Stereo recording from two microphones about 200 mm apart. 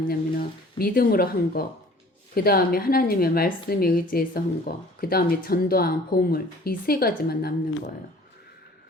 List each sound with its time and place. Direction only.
0.1 s speech: 45° left (ahead or behind)